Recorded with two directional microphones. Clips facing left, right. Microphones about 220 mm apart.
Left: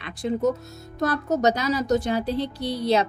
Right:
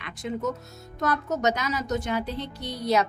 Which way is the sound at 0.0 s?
35° left (ahead or behind).